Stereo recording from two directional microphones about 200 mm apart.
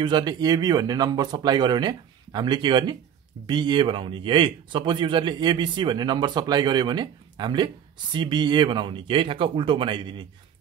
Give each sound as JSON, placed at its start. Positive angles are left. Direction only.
{"t": 0.0, "sound": "a man's voice", "side_deg": -20}